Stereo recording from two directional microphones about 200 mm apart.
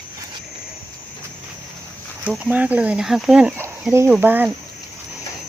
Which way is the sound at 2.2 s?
5° right (ahead or behind).